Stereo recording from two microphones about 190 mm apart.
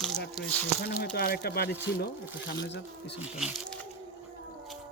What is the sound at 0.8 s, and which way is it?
Speech, 60° left (ahead or behind).